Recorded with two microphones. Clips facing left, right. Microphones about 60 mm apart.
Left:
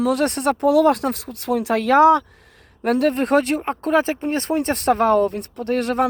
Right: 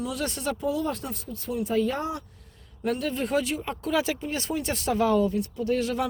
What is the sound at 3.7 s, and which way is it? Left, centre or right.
Speech, left.